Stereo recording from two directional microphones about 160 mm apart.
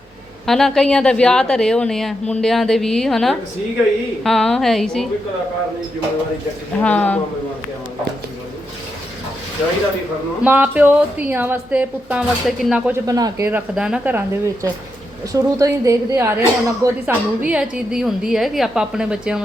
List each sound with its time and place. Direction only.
0.4 s a woman's voice: centre (ahead or behind)
6.7 s speech: 10° left (ahead or behind)
10.4 s a woman's voice: 10° right (ahead or behind)
13.1 s a woman's voice: 20° right (ahead or behind)
13.5 s a woman's voice: 5° right (ahead or behind)
17.4 s a woman's voice: 5° right (ahead or behind)